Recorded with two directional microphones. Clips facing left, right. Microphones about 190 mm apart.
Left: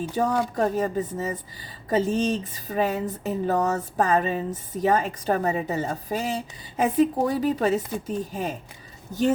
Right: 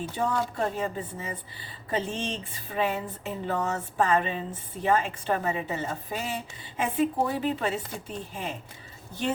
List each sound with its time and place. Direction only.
0.2 s speech: 40° left (ahead or behind)